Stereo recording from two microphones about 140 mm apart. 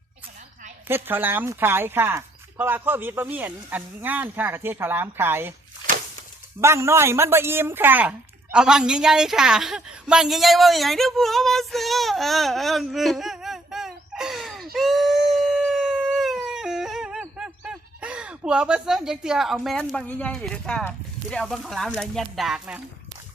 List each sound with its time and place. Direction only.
0.9 s speech: 15° right (ahead or behind)
6.6 s speech: 20° right (ahead or behind)